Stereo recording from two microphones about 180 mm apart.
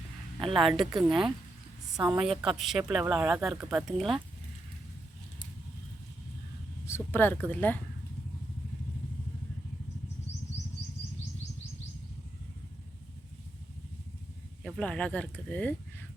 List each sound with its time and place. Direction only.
0.3 s a woman's voice: 30° right (ahead or behind)
1.0 s speech: centre (ahead or behind)
6.8 s speech: 15° left (ahead or behind)
14.6 s speech: 5° left (ahead or behind)